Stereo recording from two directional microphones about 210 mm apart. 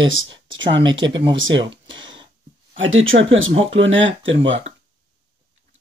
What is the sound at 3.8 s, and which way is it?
Speech, 65° right (ahead or behind).